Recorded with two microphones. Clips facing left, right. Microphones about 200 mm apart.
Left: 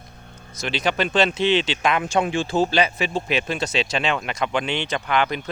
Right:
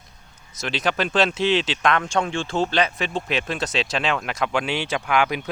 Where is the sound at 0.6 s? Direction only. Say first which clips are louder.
Left 1 dB; centre (ahead or behind).